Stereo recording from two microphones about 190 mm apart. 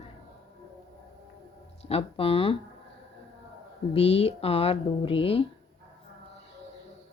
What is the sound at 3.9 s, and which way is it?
Speech, 30° left (ahead or behind).